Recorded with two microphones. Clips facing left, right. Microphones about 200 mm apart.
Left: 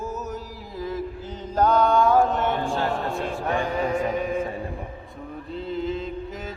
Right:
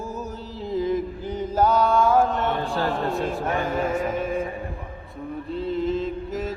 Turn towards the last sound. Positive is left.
turn(degrees=0)  # may be behind; listen again after turning